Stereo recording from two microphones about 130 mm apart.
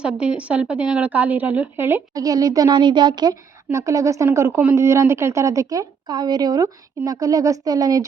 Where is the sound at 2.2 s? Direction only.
30° right (ahead or behind).